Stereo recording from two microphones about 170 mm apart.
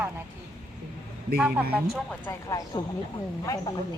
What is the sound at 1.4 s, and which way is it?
Speech, 5° right (ahead or behind).